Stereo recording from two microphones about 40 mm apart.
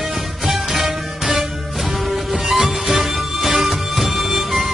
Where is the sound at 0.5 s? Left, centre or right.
Centre.